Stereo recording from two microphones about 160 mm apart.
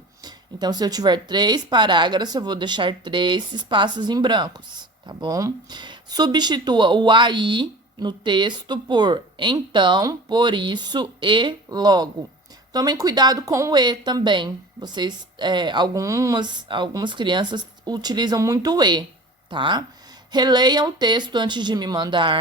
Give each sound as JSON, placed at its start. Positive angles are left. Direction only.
{"t": 0.2, "sound": "speech", "side_deg": -25}